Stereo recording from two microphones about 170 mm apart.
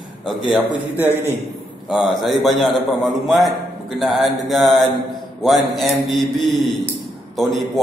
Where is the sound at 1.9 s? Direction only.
Centre (ahead or behind).